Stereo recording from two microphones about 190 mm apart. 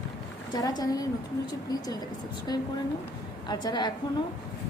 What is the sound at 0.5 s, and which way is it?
A woman's voice, 20° left (ahead or behind).